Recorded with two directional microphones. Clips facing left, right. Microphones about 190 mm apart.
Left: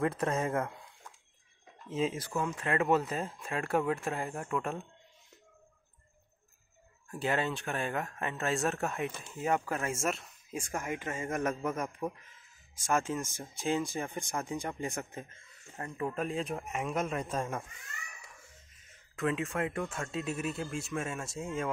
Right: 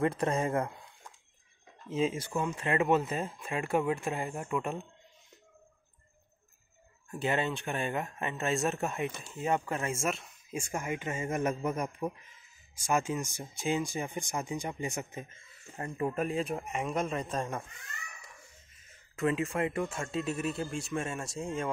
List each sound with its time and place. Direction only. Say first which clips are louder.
0.0 s speech: right 2 dB; centre (ahead or behind)
2.0 s speech: right 2 dB; centre (ahead or behind)
2.6 s speech: right 1 dB; 10° right (ahead or behind)
7.2 s speech: right 1 dB; centre (ahead or behind)
11.1 s speech: right 2 dB; 20° right (ahead or behind); by 13.7 s centre (ahead or behind)
13.9 s speech: right 1 dB; 15° right (ahead or behind); by 17.6 s 10° left (ahead or behind)
19.1 s speech: right 2 dB; centre (ahead or behind)